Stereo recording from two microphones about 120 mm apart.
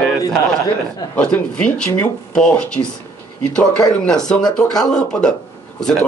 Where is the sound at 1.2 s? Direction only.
10° left (ahead or behind).